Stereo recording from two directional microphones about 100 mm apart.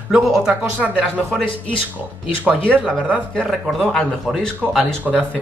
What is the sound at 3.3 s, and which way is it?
Speech, 10° left (ahead or behind).